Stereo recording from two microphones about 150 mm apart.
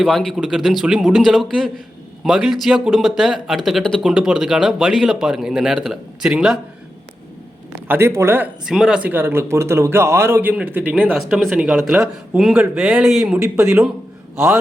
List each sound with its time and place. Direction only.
0.0 s speech: centre (ahead or behind)
7.7 s speech: 15° right (ahead or behind)
8.6 s a man's voice: 5° right (ahead or behind)